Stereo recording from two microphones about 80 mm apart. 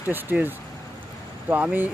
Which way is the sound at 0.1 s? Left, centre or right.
Right.